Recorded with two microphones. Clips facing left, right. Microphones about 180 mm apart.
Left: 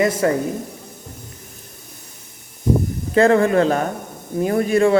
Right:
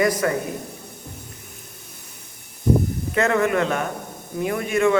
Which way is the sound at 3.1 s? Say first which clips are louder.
Left 6 dB; 30° left (ahead or behind).